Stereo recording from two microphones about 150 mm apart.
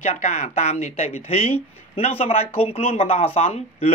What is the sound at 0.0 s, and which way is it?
Speech, 50° left (ahead or behind).